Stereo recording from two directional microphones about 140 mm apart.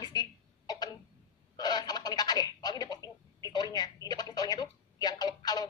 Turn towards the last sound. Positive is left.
turn(degrees=30)  # may be behind; listen again after turning